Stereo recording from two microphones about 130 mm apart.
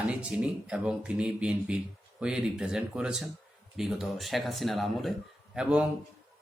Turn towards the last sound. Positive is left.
turn(degrees=-5)  # may be behind; listen again after turning